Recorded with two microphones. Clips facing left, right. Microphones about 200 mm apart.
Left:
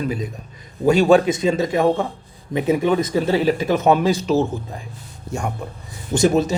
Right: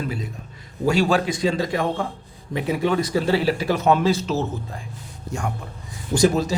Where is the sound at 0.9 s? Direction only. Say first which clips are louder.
Left 6 dB; 20° left (ahead or behind).